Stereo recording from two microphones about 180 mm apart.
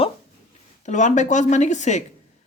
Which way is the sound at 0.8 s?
40° left (ahead or behind).